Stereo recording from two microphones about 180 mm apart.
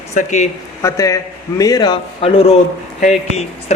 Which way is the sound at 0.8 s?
15° left (ahead or behind).